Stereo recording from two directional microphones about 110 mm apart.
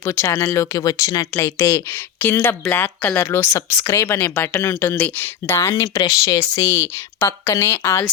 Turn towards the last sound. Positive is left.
turn(degrees=25)  # may be behind; listen again after turning